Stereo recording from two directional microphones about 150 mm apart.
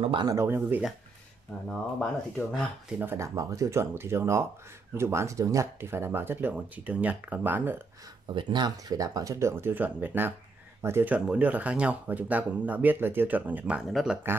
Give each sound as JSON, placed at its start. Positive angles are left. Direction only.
{"t": 0.0, "sound": "speech", "side_deg": -35}
{"t": 0.3, "sound": "speech", "side_deg": -15}
{"t": 1.7, "sound": "speech", "side_deg": 0}
{"t": 8.4, "sound": "speech", "side_deg": -30}